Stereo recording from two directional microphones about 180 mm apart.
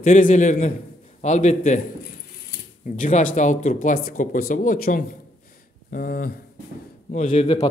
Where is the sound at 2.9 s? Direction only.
45° left (ahead or behind).